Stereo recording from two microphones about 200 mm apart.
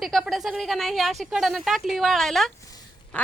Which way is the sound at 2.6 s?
15° left (ahead or behind).